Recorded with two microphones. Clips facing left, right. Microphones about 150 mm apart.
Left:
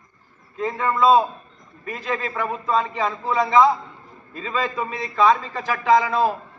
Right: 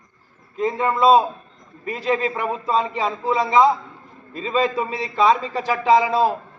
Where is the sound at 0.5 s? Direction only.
30° right (ahead or behind).